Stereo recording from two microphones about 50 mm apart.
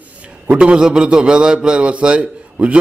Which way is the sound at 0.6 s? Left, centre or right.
Centre.